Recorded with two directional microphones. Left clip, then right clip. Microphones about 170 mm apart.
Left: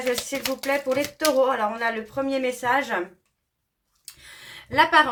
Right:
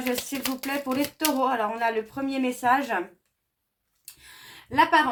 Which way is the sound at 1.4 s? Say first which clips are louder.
Left 1 dB; 30° right (ahead or behind).